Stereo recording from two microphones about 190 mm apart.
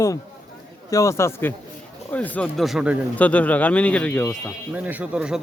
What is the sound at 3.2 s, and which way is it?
A man's voice, 5° left (ahead or behind).